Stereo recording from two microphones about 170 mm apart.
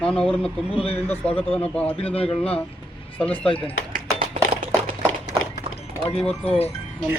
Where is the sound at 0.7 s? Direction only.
35° left (ahead or behind).